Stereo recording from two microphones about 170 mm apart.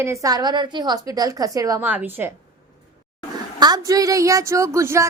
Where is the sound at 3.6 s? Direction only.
20° right (ahead or behind).